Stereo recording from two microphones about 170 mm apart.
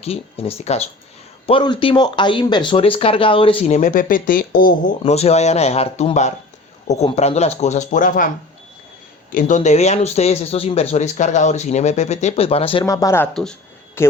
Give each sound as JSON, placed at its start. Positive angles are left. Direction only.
{"t": 0.0, "sound": "speech", "side_deg": 35}
{"t": 5.0, "sound": "speech", "side_deg": 40}
{"t": 9.3, "sound": "speech", "side_deg": 45}
{"t": 12.8, "sound": "speech", "side_deg": 20}
{"t": 13.2, "sound": "speech", "side_deg": 5}
{"t": 14.0, "sound": "speech", "side_deg": 15}